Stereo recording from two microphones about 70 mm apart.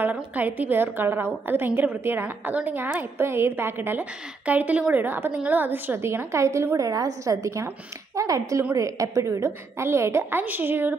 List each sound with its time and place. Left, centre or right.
0.0 s a woman's voice: right
4.5 s a woman's voice: right
6.8 s a woman's voice: right
10.4 s a woman's voice: right